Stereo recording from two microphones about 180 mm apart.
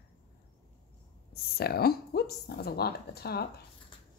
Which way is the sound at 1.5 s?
60° left (ahead or behind).